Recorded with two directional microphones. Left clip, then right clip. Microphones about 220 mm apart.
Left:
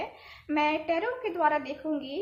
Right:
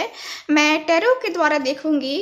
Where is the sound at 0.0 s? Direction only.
40° right (ahead or behind).